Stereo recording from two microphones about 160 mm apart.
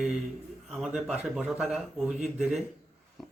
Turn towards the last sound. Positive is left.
turn(degrees=0)  # may be behind; listen again after turning